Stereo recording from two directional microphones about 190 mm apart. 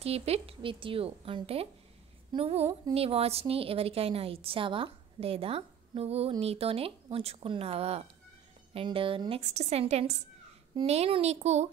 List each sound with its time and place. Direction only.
0.0 s a woman's voice: 30° right (ahead or behind)